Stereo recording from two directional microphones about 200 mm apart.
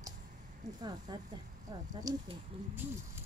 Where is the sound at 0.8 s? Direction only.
20° right (ahead or behind).